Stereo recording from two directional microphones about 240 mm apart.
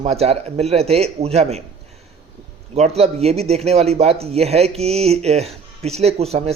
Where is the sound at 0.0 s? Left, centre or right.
Right.